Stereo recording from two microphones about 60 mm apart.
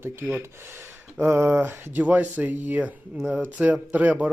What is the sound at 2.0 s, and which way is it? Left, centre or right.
Speech, right.